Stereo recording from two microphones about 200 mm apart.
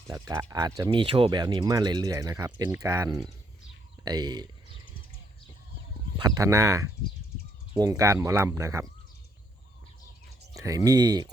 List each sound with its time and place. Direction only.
0.1 s speech: 20° right (ahead or behind)
6.1 s speech: 20° right (ahead or behind)
10.6 s speech: 15° right (ahead or behind)